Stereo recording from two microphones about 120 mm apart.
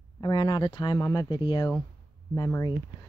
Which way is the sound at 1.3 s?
35° left (ahead or behind).